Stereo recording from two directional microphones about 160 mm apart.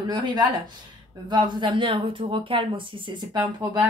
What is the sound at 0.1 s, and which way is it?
A woman's voice, 25° right (ahead or behind).